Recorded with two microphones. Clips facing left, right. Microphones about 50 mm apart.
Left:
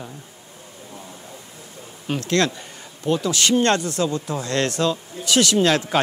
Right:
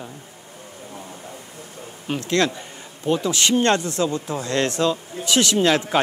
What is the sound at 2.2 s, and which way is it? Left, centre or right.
Speech, right.